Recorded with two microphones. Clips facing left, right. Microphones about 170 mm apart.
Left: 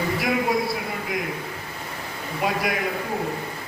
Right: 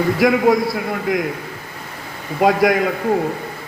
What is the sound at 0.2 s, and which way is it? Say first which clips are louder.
Speech: right 12 dB; 60° right (ahead or behind).